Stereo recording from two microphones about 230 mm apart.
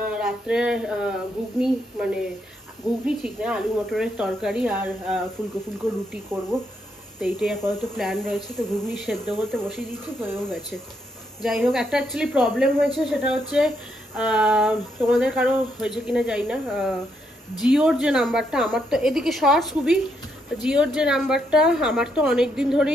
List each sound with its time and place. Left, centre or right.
0.1 s speech: centre
7.2 s speech: centre
11.4 s speech: centre